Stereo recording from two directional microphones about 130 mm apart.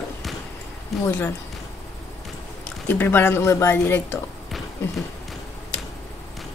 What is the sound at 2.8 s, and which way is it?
Speech, 15° left (ahead or behind).